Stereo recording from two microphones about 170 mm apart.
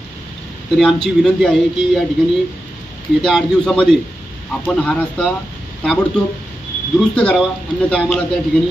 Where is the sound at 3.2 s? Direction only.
Centre (ahead or behind).